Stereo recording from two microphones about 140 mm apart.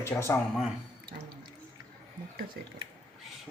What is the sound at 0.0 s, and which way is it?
Speech, 20° left (ahead or behind).